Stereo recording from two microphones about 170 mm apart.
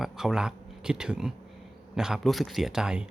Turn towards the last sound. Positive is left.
turn(degrees=-5)  # may be behind; listen again after turning